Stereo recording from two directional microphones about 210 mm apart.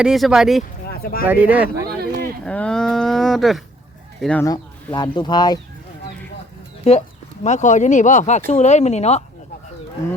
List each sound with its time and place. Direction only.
0.0 s speech: centre (ahead or behind)
0.9 s a sound: 45° left (ahead or behind)
1.2 s speech: 10° right (ahead or behind)
2.0 s a sound: 45° right (ahead or behind)
2.4 s speech: 5° left (ahead or behind)
4.4 s speech: 20° left (ahead or behind)
7.4 s speech: 35° left (ahead or behind)